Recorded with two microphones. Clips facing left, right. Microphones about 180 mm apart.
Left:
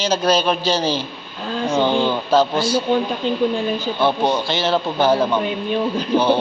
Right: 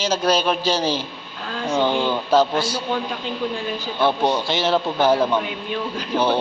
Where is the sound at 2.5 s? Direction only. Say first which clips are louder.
Left 4 dB; 10° left (ahead or behind).